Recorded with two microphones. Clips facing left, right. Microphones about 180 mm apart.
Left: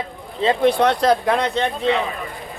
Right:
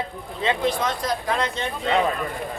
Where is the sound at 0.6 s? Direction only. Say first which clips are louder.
Left 8 dB; 65° left (ahead or behind).